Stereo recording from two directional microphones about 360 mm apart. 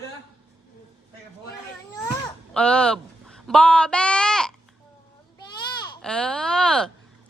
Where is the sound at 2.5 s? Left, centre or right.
Centre.